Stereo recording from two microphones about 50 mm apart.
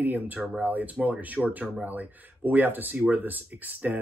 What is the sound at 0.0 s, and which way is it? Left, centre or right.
Speech, right.